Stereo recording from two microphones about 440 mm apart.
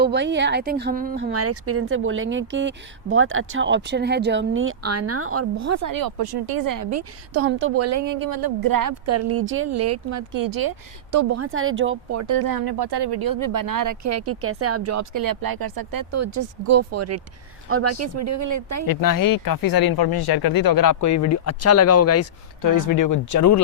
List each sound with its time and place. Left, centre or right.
0.0 s speech: right
7.4 s a woman's voice: right
11.4 s speech: right
12.2 s speech: right
16.1 s a woman's voice: right
18.9 s speech: left